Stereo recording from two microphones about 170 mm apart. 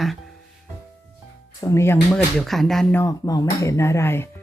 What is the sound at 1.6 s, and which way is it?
Speech, 15° left (ahead or behind).